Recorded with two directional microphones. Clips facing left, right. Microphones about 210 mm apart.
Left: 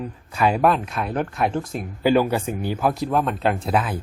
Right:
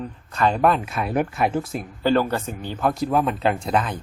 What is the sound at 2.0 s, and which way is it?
Speech, 10° left (ahead or behind).